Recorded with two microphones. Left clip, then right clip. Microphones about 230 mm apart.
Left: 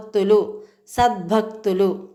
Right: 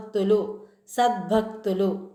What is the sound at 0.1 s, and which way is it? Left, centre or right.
Speech, left.